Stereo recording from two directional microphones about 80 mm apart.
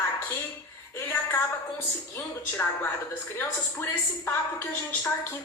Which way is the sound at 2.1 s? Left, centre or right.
Left.